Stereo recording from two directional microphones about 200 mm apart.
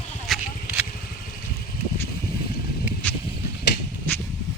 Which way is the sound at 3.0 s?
5° left (ahead or behind).